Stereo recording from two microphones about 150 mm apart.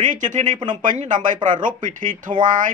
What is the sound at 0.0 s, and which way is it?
Speech, 55° right (ahead or behind).